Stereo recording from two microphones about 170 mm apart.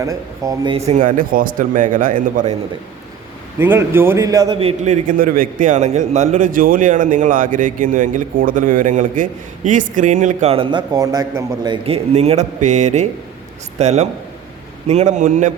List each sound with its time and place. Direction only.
0.0 s speech: 20° right (ahead or behind)
0.9 s a man's voice: 50° right (ahead or behind)
3.6 s a man's voice: 10° right (ahead or behind)
12.1 s a man's voice: 40° right (ahead or behind)